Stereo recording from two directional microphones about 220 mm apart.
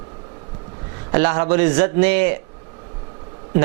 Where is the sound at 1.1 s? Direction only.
15° right (ahead or behind).